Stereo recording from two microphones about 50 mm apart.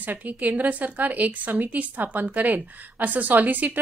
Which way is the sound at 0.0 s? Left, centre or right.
Right.